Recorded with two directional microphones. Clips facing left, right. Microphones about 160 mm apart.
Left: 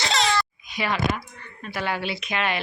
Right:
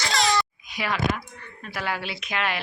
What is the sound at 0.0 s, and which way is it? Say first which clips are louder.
Babbling: left 1 dB; 25° left (ahead or behind).